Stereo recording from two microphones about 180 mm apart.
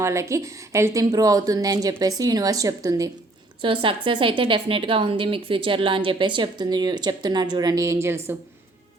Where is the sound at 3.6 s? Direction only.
30° right (ahead or behind); by 8.3 s 15° right (ahead or behind).